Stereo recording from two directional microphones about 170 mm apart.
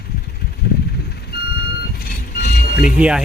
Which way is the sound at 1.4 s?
70° left (ahead or behind).